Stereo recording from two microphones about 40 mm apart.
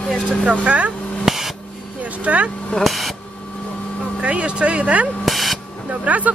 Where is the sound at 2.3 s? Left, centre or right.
Right.